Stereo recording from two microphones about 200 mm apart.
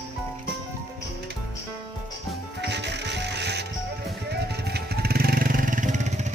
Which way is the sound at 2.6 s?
60° right (ahead or behind).